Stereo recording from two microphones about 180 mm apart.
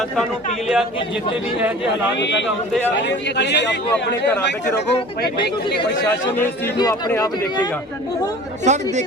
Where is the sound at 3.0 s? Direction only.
75° left (ahead or behind).